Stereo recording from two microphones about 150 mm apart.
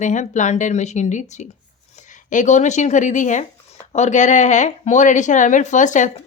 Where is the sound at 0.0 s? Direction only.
55° left (ahead or behind).